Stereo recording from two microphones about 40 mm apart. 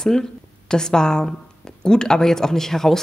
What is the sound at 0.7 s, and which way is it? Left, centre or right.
Speech, centre.